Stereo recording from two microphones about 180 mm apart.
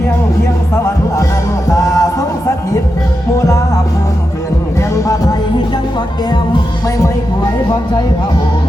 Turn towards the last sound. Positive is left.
turn(degrees=20)  # may be behind; listen again after turning